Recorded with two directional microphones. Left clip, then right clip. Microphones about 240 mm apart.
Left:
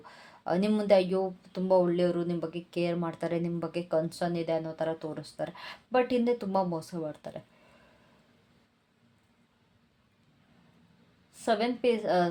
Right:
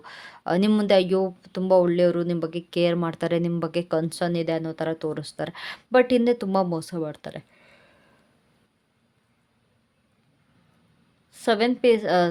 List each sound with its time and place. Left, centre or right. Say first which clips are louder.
0.0 s speech: right 6 dB; right
11.3 s speech: right 6 dB; right